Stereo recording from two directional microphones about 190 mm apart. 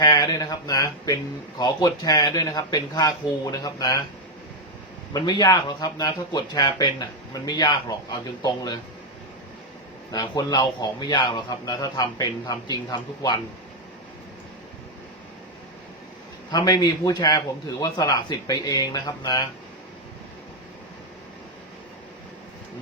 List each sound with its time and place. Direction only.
0.0 s speech: 20° left (ahead or behind)
5.1 s speech: 20° left (ahead or behind)
10.1 s speech: 20° left (ahead or behind)
16.5 s speech: 20° left (ahead or behind)